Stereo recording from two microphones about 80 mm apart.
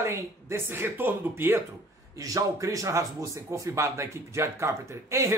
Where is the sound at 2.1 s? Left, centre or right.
Right.